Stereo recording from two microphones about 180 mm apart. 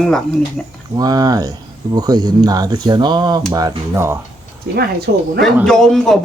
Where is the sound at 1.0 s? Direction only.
20° right (ahead or behind).